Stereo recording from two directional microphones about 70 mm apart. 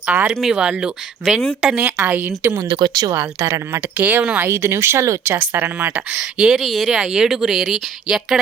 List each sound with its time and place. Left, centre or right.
0.1 s a woman's voice: right
1.2 s speech: centre
1.6 s speech: centre
2.0 s a woman's voice: right
2.6 s speech: right
3.2 s speech: right
3.9 s a woman's voice: right
4.4 s speech: right
6.1 s speech: centre
6.6 s speech: centre